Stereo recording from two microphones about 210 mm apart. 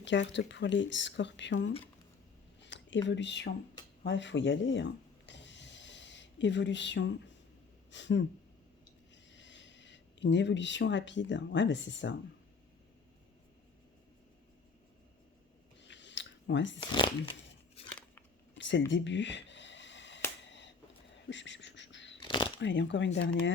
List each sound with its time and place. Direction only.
0.0 s speech: 60° left (ahead or behind)
2.6 s a sound: 60° left (ahead or behind)
7.9 s speech: 60° left (ahead or behind)
9.3 s speech: 60° left (ahead or behind)
15.8 s chewing: 60° left (ahead or behind)
16.9 s speech: 20° left (ahead or behind)
18.5 s a sound: 60° left (ahead or behind)
22.2 s a sound: 20° left (ahead or behind)
22.6 s speech: 60° left (ahead or behind)